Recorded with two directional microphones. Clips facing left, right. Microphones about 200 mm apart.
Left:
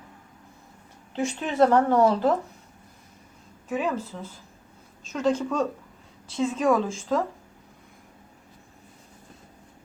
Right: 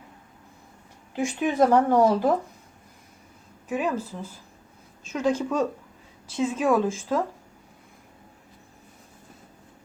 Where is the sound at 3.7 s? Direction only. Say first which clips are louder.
Right 1 dB; 10° right (ahead or behind).